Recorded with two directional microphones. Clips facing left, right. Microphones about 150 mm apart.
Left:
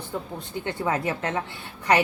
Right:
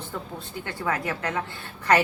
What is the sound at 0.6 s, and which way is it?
Speech, 25° left (ahead or behind).